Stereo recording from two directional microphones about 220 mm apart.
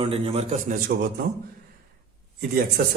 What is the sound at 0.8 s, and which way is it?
Speech, 45° right (ahead or behind).